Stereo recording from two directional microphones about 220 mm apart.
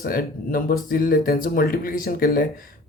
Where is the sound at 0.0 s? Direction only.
40° left (ahead or behind).